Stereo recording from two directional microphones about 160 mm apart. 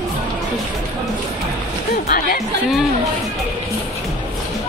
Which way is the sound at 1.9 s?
60° left (ahead or behind).